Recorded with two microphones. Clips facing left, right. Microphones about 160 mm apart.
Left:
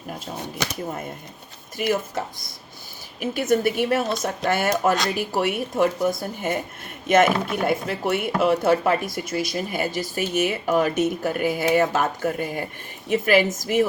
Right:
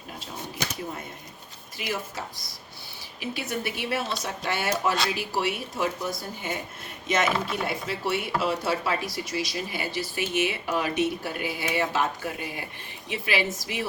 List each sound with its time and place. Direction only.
1.8 s speech: 55° left (ahead or behind)